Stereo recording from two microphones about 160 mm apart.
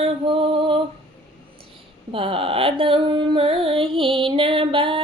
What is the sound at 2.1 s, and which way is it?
Music, 35° right (ahead or behind).